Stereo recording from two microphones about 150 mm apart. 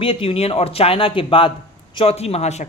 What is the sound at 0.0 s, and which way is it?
Speech, 35° left (ahead or behind).